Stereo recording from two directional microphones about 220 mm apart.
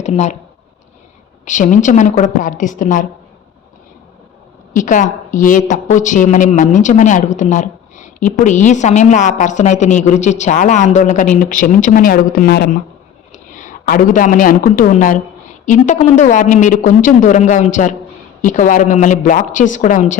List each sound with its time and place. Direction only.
0.0 s speech: 30° left (ahead or behind)
1.5 s a woman's voice: 35° left (ahead or behind)
4.7 s a woman's voice: 35° left (ahead or behind)